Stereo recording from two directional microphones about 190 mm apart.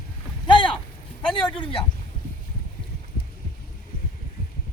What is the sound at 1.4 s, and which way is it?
Speech, 25° left (ahead or behind).